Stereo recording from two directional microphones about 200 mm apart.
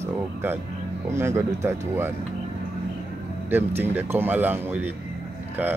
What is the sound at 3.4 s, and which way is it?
Speech, 10° right (ahead or behind).